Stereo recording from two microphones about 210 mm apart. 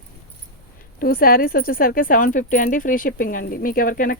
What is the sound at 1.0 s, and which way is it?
Speech, 45° left (ahead or behind).